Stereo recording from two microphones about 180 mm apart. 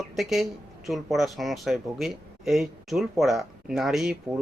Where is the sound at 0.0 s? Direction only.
Centre (ahead or behind).